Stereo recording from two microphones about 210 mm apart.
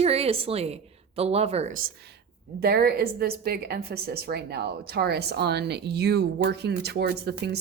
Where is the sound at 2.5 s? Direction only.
50° right (ahead or behind).